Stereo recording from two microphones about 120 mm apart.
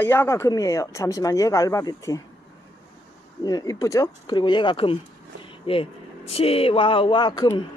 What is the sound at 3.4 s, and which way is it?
A woman's voice, 30° left (ahead or behind).